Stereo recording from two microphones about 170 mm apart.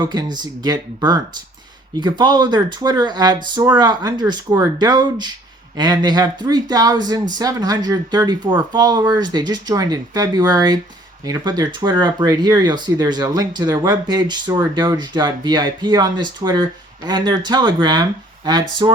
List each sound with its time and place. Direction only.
0.0 s speech: 25° right (ahead or behind)